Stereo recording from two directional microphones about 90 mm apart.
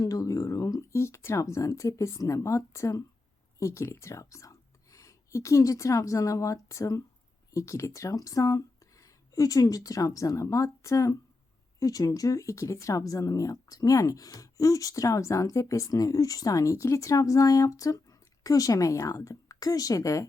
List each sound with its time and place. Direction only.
0.0 s speech: 40° left (ahead or behind)